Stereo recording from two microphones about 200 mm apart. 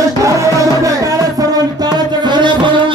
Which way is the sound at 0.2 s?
15° right (ahead or behind).